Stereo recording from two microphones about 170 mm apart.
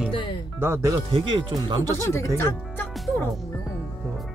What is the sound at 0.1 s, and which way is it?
Music, 30° left (ahead or behind).